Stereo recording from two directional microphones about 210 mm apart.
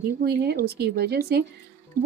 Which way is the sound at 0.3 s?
50° right (ahead or behind).